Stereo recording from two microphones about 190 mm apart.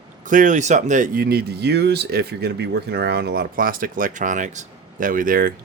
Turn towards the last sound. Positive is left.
turn(degrees=-45)  # may be behind; listen again after turning